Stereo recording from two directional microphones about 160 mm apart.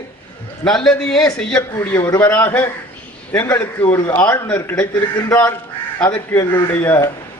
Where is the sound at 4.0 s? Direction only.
25° left (ahead or behind).